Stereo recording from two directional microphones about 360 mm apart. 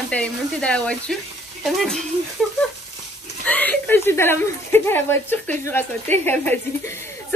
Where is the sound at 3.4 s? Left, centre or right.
Centre.